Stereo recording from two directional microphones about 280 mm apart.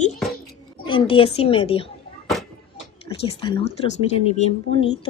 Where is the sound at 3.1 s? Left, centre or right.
Centre.